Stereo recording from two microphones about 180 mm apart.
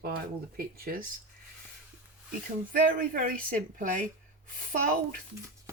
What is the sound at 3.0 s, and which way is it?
Speech, 50° right (ahead or behind).